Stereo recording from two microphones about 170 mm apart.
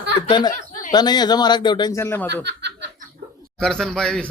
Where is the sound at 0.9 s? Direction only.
25° left (ahead or behind).